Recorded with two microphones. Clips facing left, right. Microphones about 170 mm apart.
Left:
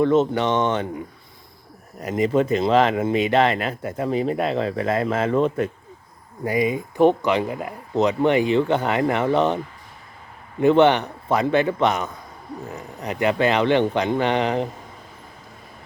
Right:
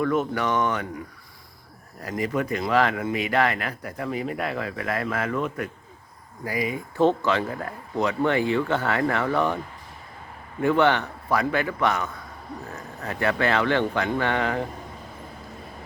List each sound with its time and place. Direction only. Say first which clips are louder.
0.0 s speech: left 6 dB; 25° left (ahead or behind)
10.6 s speech: left 5 dB; 20° left (ahead or behind)